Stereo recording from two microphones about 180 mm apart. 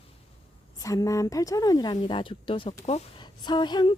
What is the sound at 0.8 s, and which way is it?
Speech, 20° left (ahead or behind).